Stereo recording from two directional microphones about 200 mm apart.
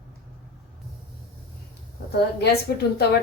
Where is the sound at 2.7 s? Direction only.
50° left (ahead or behind).